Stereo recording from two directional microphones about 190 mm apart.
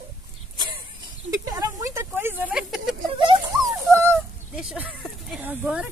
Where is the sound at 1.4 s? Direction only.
15° right (ahead or behind).